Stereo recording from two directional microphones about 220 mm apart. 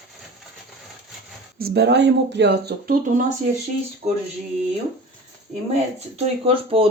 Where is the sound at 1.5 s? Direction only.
45° right (ahead or behind).